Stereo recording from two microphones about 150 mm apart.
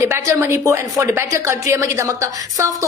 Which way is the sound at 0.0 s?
20° right (ahead or behind).